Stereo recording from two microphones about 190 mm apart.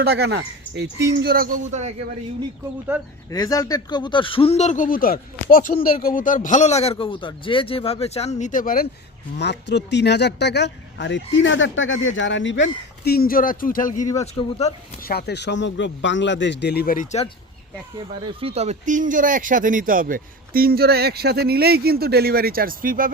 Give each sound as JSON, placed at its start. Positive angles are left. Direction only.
{"t": 0.0, "sound": "speech", "side_deg": -60}
{"t": 1.2, "sound": "speech", "side_deg": -50}
{"t": 3.3, "sound": "speech", "side_deg": 20}
{"t": 9.4, "sound": "speech", "side_deg": 65}
{"t": 13.1, "sound": "speech", "side_deg": 50}
{"t": 14.2, "sound": "speech", "side_deg": 30}
{"t": 15.0, "sound": "a man's voice", "side_deg": 60}
{"t": 18.3, "sound": "speech", "side_deg": -30}